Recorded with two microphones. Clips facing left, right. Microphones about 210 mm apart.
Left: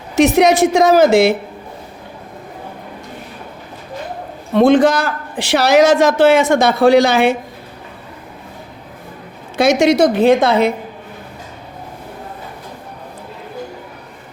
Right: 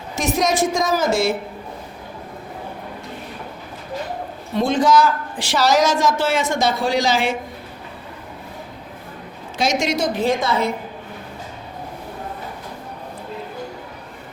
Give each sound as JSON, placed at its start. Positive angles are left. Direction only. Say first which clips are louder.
{"t": 0.2, "sound": "speech", "louder": "left 9 dB", "side_deg": 65}
{"t": 4.5, "sound": "speech", "louder": "left 6 dB", "side_deg": 65}
{"t": 9.6, "sound": "speech", "louder": "left 9 dB", "side_deg": 60}